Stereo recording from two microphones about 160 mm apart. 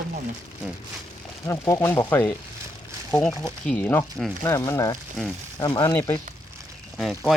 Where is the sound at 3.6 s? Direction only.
10° left (ahead or behind).